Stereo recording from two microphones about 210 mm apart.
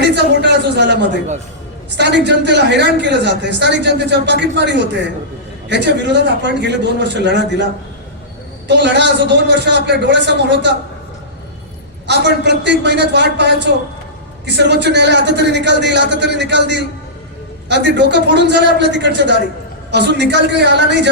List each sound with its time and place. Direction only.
0.0 s a man's voice: 55° right (ahead or behind)
2.0 s speech: 55° right (ahead or behind)
12.0 s speech: 55° right (ahead or behind)